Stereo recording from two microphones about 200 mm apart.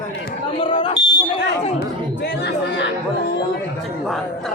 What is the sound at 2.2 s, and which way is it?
Chatter, 55° left (ahead or behind).